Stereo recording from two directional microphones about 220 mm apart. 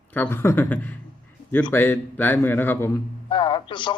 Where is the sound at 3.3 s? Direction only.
20° left (ahead or behind).